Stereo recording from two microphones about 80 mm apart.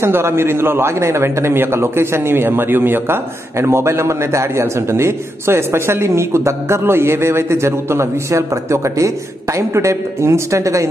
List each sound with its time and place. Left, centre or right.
0.0 s a man's voice: right